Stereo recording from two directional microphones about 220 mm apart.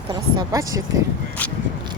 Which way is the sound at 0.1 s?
15° right (ahead or behind).